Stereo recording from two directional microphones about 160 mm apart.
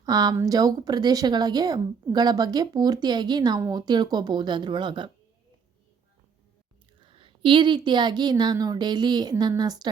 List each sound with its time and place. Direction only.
0.0 s a woman's voice: 25° right (ahead or behind)
7.0 s a sound: 35° right (ahead or behind)
7.9 s a woman's voice: 30° right (ahead or behind)